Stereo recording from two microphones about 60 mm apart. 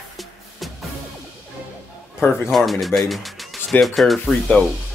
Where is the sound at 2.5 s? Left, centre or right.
Centre.